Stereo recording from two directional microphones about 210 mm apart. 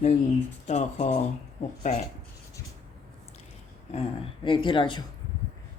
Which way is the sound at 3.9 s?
25° left (ahead or behind).